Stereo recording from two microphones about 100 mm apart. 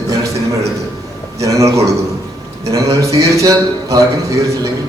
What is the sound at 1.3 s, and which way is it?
A man's voice, 30° right (ahead or behind).